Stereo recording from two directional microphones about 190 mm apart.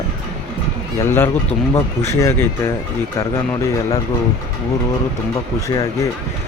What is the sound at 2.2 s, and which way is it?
Speech, 10° left (ahead or behind).